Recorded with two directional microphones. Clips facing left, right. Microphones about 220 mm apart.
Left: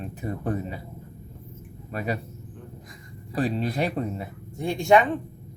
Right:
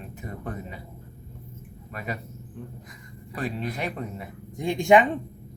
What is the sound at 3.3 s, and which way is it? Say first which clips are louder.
Speech: left 5 dB; 35° left (ahead or behind).